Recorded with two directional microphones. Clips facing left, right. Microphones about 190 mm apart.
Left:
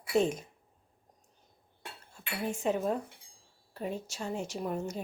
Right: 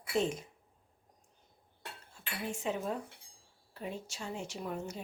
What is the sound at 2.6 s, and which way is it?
A woman's voice, 45° left (ahead or behind).